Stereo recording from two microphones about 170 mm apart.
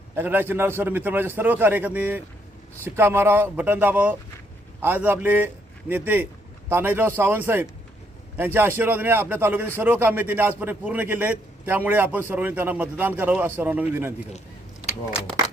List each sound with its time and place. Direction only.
0.2 s a man's voice: 15° right (ahead or behind)